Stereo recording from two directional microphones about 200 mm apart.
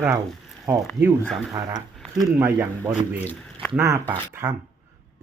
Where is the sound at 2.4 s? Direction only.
10° right (ahead or behind).